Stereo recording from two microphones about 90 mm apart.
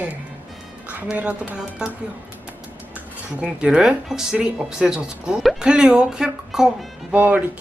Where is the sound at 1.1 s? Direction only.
15° right (ahead or behind).